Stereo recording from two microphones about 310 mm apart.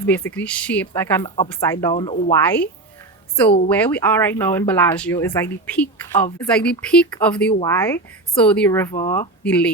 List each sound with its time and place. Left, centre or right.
0.0 s speech: centre
3.7 s speech: centre